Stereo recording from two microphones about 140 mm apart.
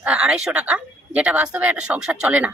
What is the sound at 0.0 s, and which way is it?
Speech, 5° right (ahead or behind).